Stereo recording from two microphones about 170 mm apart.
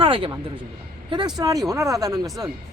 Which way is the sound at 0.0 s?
30° right (ahead or behind).